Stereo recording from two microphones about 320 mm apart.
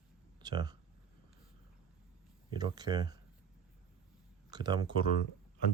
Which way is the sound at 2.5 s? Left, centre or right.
Centre.